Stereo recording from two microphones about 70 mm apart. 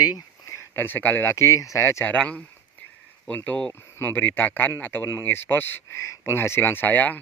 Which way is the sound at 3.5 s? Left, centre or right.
Centre.